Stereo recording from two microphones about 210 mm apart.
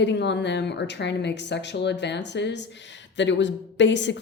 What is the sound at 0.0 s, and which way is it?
Speech, 55° left (ahead or behind).